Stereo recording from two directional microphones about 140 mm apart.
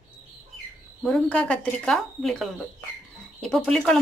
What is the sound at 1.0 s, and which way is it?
Speech, 5° left (ahead or behind).